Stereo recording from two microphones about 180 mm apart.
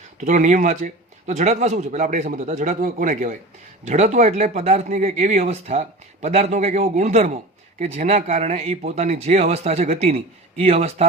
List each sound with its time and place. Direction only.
0.2 s speech: 40° right (ahead or behind)